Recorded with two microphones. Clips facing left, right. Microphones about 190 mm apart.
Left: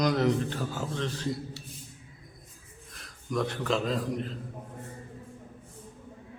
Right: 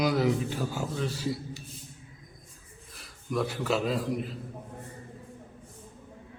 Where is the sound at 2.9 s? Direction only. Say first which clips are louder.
Even; 5° right (ahead or behind).